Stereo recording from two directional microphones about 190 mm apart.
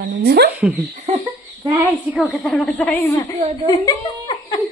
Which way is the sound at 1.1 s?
35° right (ahead or behind).